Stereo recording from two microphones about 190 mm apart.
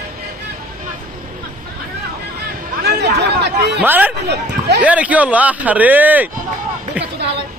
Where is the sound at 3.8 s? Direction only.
10° right (ahead or behind).